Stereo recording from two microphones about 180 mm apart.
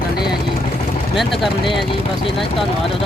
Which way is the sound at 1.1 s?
Centre (ahead or behind).